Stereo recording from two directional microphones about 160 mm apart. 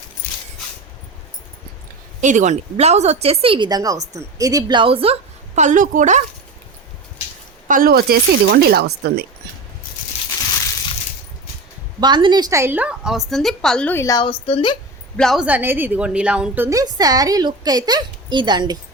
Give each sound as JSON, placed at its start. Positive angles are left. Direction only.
{"t": 2.2, "sound": "speech", "side_deg": -50}
{"t": 5.5, "sound": "a woman's voice", "side_deg": -50}
{"t": 7.7, "sound": "speech", "side_deg": -65}
{"t": 10.1, "sound": "crushing", "side_deg": 40}
{"t": 11.9, "sound": "a woman's voice", "side_deg": -30}
{"t": 14.2, "sound": "a woman's voice", "side_deg": 35}
{"t": 15.1, "sound": "a woman's voice", "side_deg": 0}
{"t": 15.4, "sound": "a woman's voice", "side_deg": -10}
{"t": 16.6, "sound": "a woman's voice", "side_deg": -20}